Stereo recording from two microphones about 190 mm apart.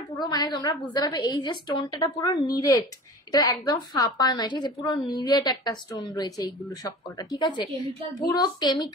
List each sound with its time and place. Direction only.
0.1 s a woman's voice: 20° left (ahead or behind)